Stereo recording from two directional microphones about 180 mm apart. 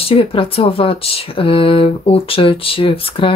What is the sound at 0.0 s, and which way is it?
Speech, 30° left (ahead or behind).